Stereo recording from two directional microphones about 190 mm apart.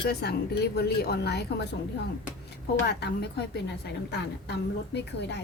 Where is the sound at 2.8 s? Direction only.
60° left (ahead or behind).